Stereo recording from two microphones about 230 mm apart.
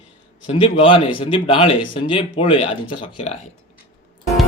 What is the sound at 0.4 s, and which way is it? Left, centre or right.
A man's voice, left.